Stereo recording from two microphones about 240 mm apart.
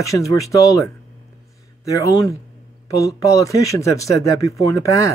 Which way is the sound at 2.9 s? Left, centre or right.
Centre.